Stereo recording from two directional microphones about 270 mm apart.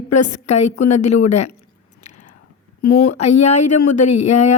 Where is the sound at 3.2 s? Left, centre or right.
Left.